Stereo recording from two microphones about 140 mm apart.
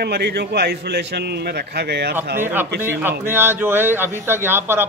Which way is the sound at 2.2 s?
15° right (ahead or behind).